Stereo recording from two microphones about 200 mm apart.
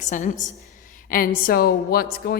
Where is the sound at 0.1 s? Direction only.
40° left (ahead or behind).